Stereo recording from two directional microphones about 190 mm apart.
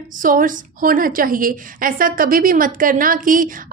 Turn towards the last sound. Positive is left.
turn(degrees=-45)  # may be behind; listen again after turning